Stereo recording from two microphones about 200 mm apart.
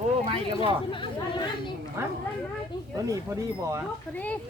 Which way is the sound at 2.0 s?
15° right (ahead or behind).